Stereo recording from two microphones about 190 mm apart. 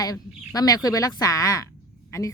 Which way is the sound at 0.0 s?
20° left (ahead or behind).